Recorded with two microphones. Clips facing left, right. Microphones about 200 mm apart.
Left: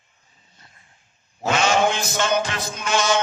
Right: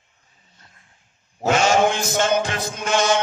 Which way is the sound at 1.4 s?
45° right (ahead or behind).